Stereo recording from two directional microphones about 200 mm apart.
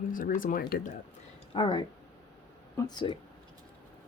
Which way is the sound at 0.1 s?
45° left (ahead or behind).